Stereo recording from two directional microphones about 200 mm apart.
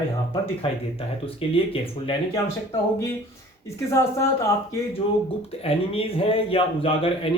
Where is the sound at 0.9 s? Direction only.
30° left (ahead or behind).